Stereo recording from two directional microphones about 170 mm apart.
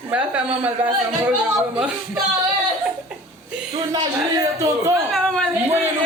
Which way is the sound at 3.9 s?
20° right (ahead or behind).